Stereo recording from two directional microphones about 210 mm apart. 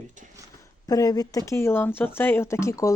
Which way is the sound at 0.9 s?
15° left (ahead or behind).